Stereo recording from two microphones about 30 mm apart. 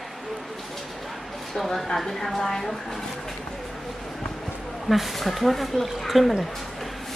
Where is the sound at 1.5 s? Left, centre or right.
Centre.